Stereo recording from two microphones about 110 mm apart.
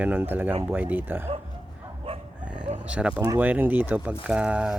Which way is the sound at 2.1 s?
55° right (ahead or behind).